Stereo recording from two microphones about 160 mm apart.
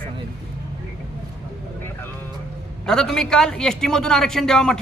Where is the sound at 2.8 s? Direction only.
5° left (ahead or behind).